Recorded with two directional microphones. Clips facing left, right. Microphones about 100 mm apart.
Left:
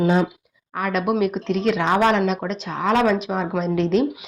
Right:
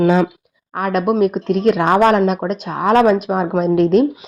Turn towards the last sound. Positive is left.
turn(degrees=-50)  # may be behind; listen again after turning